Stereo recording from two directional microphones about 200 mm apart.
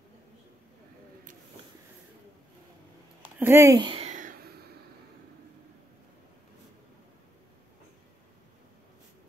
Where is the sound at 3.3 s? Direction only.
15° right (ahead or behind); by 4.5 s 40° right (ahead or behind).